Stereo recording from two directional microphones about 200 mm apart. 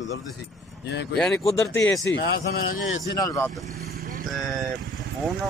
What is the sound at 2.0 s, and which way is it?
Speech, 65° left (ahead or behind).